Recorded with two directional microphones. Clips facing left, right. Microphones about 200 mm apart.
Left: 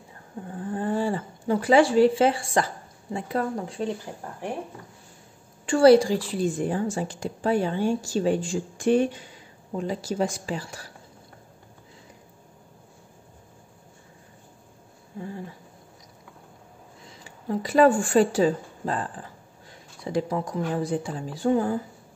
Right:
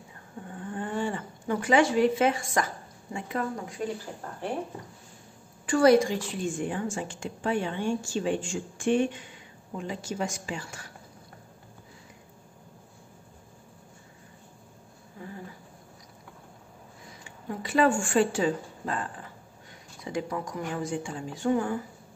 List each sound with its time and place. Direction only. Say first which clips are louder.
0.5 s speech: left 6 dB; 35° left (ahead or behind)
5.7 s a woman's voice: left 4 dB; 30° left (ahead or behind)
15.1 s a sound: left 6 dB; 30° left (ahead or behind)
17.2 s a woman's voice: left 7 dB; 35° left (ahead or behind)